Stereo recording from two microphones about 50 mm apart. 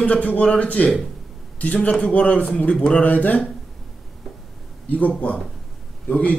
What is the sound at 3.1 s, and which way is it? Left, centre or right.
Speech, left.